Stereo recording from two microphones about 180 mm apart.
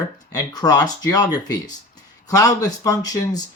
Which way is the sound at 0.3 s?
20° left (ahead or behind).